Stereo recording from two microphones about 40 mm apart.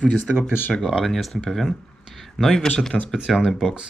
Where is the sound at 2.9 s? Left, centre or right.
Centre.